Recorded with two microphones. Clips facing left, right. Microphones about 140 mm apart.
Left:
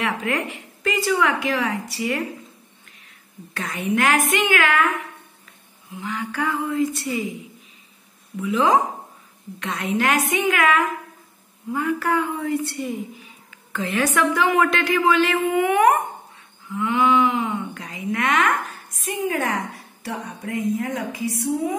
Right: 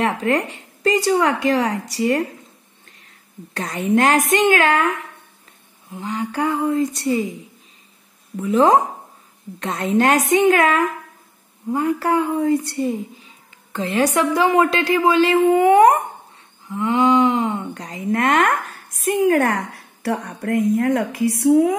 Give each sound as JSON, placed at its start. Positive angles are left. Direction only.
{"t": 0.0, "sound": "a woman's voice", "side_deg": -35}
{"t": 3.5, "sound": "a woman's voice", "side_deg": -35}
{"t": 5.9, "sound": "a woman's voice", "side_deg": -30}
{"t": 8.4, "sound": "a woman's voice", "side_deg": -35}
{"t": 12.1, "sound": "speech", "side_deg": -15}
{"t": 12.4, "sound": "a woman's voice", "side_deg": -30}
{"t": 19.0, "sound": "a woman's voice", "side_deg": -55}